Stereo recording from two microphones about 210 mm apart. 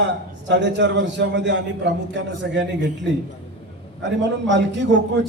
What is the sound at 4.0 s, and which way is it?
A man's voice, 60° right (ahead or behind).